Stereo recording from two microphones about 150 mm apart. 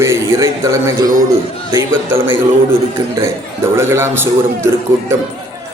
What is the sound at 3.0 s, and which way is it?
A man's voice, 25° right (ahead or behind).